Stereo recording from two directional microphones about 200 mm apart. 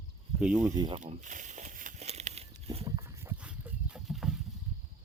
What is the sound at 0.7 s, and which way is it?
Speech, 20° right (ahead or behind).